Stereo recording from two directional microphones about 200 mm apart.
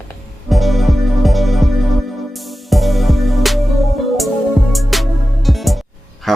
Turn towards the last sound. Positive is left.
turn(degrees=0)  # may be behind; listen again after turning